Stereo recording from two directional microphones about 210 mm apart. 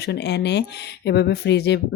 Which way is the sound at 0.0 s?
55° left (ahead or behind).